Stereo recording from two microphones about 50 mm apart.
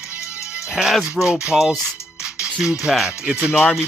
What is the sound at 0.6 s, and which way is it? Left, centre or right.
Music, centre.